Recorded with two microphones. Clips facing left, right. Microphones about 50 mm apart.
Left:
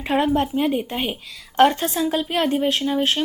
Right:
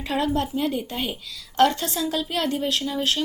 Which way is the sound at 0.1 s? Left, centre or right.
Left.